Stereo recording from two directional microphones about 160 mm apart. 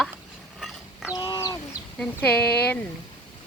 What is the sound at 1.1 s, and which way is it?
Bird, 25° left (ahead or behind).